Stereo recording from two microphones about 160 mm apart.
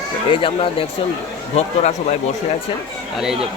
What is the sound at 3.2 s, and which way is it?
Speech, 5° right (ahead or behind).